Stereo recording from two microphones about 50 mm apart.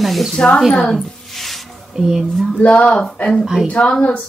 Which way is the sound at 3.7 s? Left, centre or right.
Left.